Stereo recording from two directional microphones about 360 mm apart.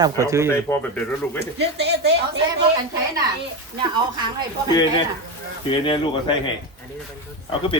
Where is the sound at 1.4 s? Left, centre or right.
Right.